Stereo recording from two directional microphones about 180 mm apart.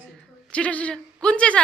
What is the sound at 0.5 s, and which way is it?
A man's voice, 5° left (ahead or behind).